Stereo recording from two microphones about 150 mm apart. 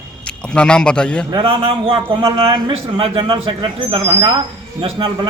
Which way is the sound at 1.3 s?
35° right (ahead or behind).